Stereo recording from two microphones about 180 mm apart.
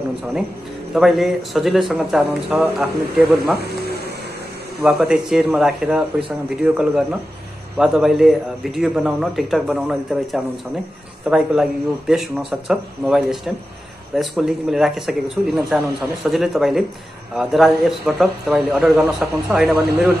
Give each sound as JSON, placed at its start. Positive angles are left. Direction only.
{"t": 0.9, "sound": "a man's voice", "side_deg": 0}
{"t": 3.5, "sound": "speech", "side_deg": -65}
{"t": 4.8, "sound": "a man's voice", "side_deg": 0}